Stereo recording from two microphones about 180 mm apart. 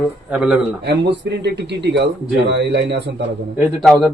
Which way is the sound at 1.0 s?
75° right (ahead or behind).